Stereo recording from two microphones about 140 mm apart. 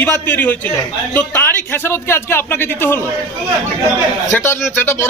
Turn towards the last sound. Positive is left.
turn(degrees=20)  # may be behind; listen again after turning